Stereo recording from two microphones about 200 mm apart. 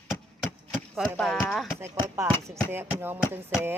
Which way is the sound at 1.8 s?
15° right (ahead or behind).